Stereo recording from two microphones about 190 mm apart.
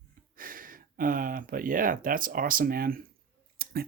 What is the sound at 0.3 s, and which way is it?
Speech, 45° right (ahead or behind).